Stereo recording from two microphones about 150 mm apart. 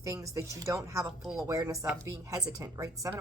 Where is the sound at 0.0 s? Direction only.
20° right (ahead or behind).